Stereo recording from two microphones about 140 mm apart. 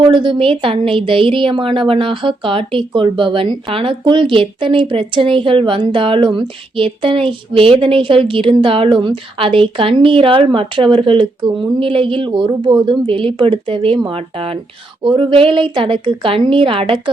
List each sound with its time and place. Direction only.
0.1 s a woman's voice: 35° right (ahead or behind)